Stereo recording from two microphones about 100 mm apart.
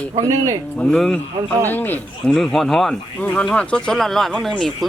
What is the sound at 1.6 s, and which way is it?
Speech, 20° left (ahead or behind).